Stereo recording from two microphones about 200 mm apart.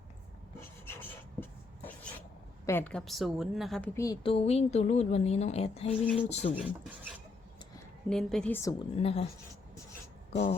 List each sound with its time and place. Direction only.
0.9 s a sound: 10° left (ahead or behind)
2.6 s a woman's voice: 10° left (ahead or behind)
3.9 s a woman's voice: 15° left (ahead or behind)
4.2 s a woman's voice: 30° left (ahead or behind)
6.5 s speech: 5° right (ahead or behind)
8.1 s a woman's voice: 5° left (ahead or behind)
9.0 s speech: 30° left (ahead or behind)